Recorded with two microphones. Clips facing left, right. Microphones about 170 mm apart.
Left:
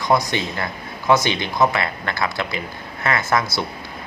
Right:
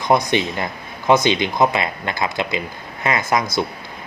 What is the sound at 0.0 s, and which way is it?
Speech, 20° right (ahead or behind).